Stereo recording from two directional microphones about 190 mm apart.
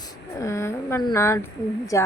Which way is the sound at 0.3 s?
15° left (ahead or behind).